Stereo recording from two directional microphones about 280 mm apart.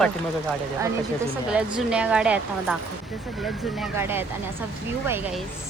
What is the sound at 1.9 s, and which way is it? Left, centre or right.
A woman's voice, centre.